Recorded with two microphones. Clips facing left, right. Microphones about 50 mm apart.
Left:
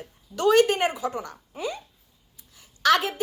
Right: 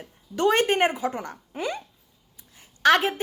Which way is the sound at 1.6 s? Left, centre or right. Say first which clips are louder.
Right 2 dB; right.